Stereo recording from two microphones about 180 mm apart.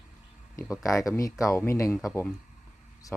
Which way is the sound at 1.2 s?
20° left (ahead or behind).